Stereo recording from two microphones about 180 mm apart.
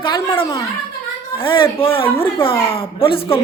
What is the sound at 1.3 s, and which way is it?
A woman's voice, 25° left (ahead or behind).